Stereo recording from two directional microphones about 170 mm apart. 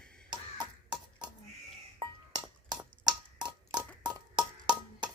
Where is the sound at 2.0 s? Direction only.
25° right (ahead or behind).